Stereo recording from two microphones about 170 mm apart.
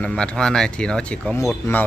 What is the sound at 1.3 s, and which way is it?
Speech, 15° left (ahead or behind).